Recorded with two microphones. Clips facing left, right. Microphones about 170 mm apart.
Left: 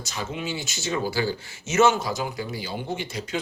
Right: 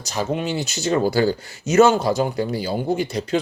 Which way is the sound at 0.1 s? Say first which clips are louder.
Right 8 dB; 40° right (ahead or behind).